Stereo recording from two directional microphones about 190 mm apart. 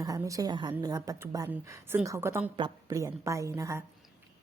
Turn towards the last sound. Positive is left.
turn(degrees=-15)  # may be behind; listen again after turning